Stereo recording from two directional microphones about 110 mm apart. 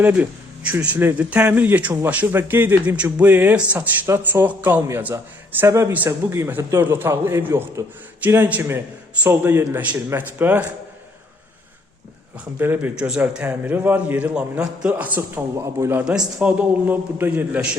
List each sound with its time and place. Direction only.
0.0 s a man's voice: 15° right (ahead or behind)
12.5 s a man's voice: 15° right (ahead or behind)
16.0 s a man's voice: 10° right (ahead or behind)